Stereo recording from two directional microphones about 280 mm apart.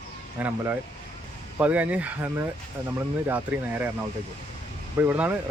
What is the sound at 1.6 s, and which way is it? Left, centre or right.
Speech, centre.